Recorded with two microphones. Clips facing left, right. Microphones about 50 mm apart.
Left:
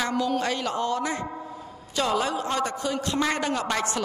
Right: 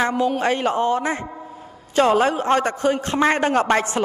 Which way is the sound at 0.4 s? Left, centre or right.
Right.